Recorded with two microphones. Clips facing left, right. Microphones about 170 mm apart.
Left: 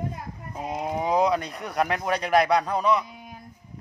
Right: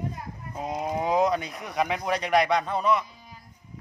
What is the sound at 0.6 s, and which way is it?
Speech, centre (ahead or behind).